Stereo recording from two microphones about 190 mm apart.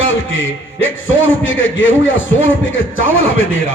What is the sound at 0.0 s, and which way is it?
A man's voice, 90° left.